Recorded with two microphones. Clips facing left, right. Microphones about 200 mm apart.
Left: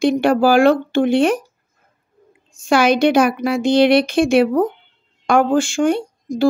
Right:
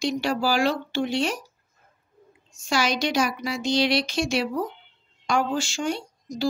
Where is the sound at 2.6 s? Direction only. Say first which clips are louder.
Left 11 dB; 55° left (ahead or behind).